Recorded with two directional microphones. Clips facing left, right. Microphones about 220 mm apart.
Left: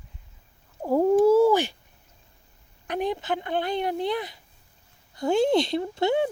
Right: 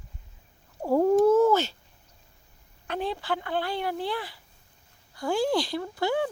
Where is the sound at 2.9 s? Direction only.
15° left (ahead or behind).